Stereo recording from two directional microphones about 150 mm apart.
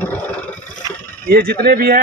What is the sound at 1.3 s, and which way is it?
Speech, 90° right.